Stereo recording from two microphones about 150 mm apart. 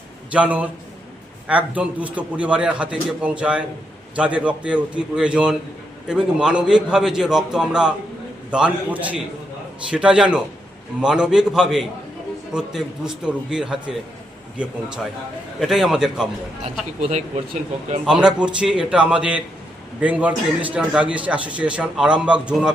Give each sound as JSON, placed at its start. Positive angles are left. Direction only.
{"t": 0.3, "sound": "a man's voice", "side_deg": -10}
{"t": 17.0, "sound": "speech", "side_deg": -45}
{"t": 18.0, "sound": "a man's voice", "side_deg": -5}